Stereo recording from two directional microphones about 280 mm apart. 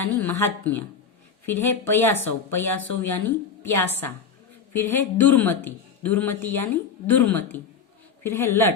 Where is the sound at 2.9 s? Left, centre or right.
Left.